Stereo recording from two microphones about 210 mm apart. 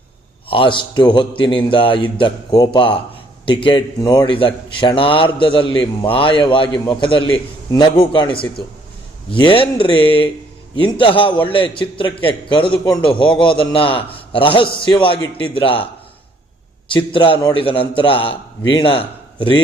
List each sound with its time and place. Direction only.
0.4 s a man's voice: 25° left (ahead or behind)
16.9 s a man's voice: 25° left (ahead or behind)